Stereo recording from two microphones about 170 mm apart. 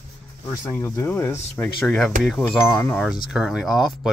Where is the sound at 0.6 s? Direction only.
15° left (ahead or behind).